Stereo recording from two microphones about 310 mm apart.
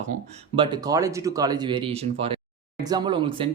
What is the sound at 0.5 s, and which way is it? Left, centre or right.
Speech, centre.